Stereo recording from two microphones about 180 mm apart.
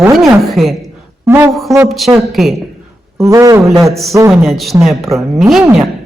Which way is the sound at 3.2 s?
15° right (ahead or behind).